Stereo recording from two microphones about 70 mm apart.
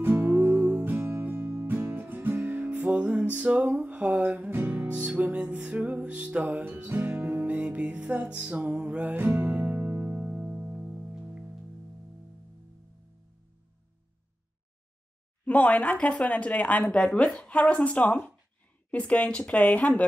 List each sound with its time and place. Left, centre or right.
0.0 s music: right
15.4 s a woman's voice: centre